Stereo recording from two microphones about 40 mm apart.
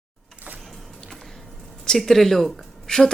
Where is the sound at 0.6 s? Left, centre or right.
Centre.